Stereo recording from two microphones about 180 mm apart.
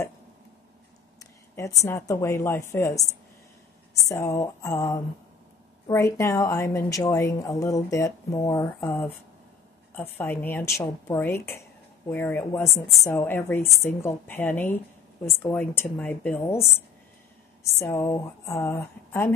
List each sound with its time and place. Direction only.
1.2 s a sound: 15° left (ahead or behind)
1.9 s a woman's voice: 15° left (ahead or behind)
4.1 s a woman's voice: 20° left (ahead or behind)
17.7 s a woman's voice: 15° left (ahead or behind)